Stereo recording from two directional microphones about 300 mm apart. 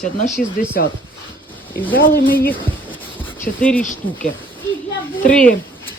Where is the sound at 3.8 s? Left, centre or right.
Left.